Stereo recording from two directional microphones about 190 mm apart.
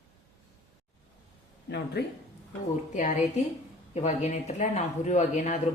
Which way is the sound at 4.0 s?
35° left (ahead or behind).